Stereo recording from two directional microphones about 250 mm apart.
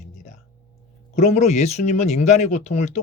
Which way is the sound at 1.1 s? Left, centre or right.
Left.